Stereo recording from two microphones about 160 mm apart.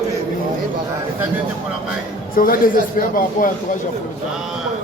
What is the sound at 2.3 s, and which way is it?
A man's voice, 60° left (ahead or behind).